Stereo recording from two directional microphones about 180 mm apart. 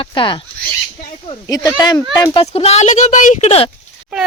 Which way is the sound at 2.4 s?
35° left (ahead or behind).